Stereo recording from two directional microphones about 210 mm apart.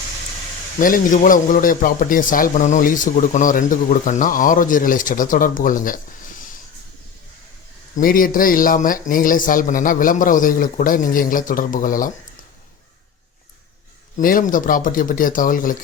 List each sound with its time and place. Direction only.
0.8 s a man's voice: 40° left (ahead or behind)
7.9 s a man's voice: 40° left (ahead or behind)
14.2 s a man's voice: 40° left (ahead or behind)